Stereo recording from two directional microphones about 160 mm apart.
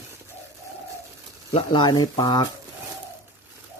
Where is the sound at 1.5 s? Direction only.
30° left (ahead or behind).